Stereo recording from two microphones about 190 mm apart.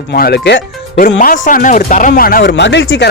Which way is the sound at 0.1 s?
60° left (ahead or behind).